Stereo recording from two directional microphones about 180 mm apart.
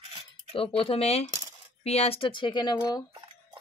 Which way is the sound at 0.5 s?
30° left (ahead or behind).